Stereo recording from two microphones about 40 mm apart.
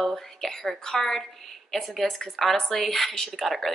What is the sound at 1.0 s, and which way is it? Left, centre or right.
A woman's voice, centre.